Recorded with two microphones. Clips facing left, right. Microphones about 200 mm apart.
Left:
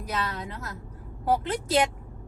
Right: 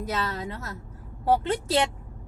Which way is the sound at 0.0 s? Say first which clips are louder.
Right 2 dB; 25° right (ahead or behind).